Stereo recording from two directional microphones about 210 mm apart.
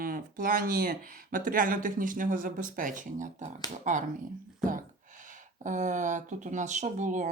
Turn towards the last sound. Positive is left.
turn(degrees=-35)  # may be behind; listen again after turning